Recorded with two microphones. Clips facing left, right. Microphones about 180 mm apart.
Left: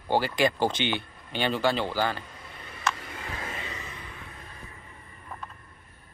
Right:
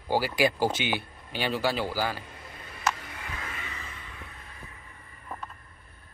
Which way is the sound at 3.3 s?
35° left (ahead or behind).